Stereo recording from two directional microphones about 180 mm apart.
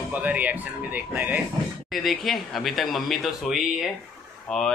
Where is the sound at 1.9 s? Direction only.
Centre (ahead or behind).